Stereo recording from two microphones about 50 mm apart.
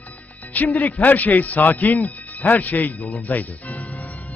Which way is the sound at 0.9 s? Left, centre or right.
Left.